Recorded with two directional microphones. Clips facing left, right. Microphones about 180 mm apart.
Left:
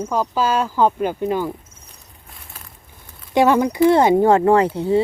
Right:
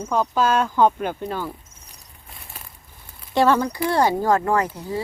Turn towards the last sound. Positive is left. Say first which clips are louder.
# left 8 dB
turn(degrees=30)  # may be behind; listen again after turning